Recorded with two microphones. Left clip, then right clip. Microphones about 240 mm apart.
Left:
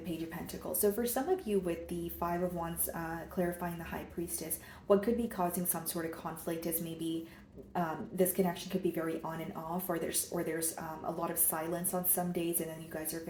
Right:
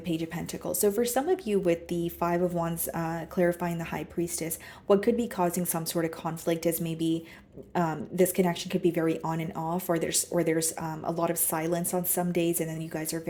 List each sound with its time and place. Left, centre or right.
0.6 s speech: right